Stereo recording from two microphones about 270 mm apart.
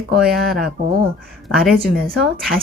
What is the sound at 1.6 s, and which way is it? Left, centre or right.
Speech, centre.